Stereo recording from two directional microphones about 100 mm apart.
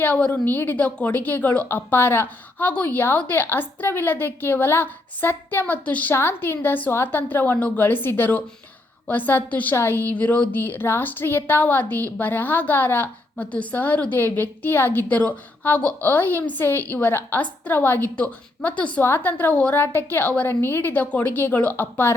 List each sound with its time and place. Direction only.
0.0 s a woman's voice: 15° left (ahead or behind)